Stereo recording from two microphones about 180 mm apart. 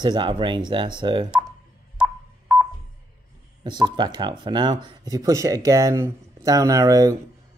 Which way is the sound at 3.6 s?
25° right (ahead or behind).